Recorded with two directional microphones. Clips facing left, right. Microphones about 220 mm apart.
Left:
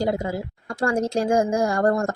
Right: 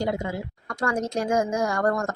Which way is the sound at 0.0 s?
35° left (ahead or behind).